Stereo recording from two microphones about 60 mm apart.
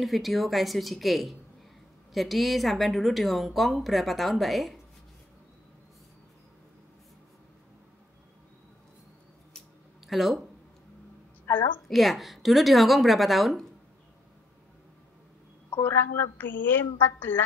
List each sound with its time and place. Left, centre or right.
0.0 s speech: centre
10.0 s speech: centre
11.5 s a woman's voice: left
11.9 s speech: centre
15.8 s a woman's voice: left